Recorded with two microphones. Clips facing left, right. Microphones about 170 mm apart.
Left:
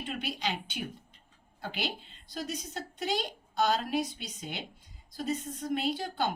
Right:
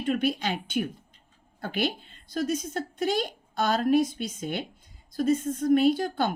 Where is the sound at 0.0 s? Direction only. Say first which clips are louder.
Right 9 dB; 50° right (ahead or behind).